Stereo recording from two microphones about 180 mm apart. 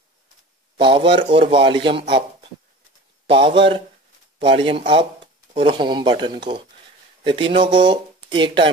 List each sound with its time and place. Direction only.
0.7 s speech: 30° right (ahead or behind)
3.3 s speech: 30° right (ahead or behind)